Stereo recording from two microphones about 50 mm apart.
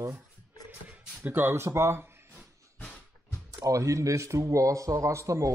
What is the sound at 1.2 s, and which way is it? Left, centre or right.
Speech, right.